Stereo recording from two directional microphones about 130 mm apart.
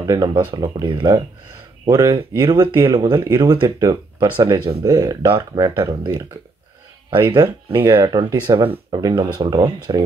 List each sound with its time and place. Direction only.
0.0 s speech: 25° right (ahead or behind)
0.3 s speech: 35° right (ahead or behind)
7.1 s speech: 40° right (ahead or behind)
7.4 s speech: 20° right (ahead or behind)